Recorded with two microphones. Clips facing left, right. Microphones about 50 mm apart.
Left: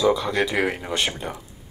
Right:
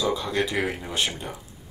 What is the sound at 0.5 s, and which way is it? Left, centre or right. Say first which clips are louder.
Speech: left 4 dB; left.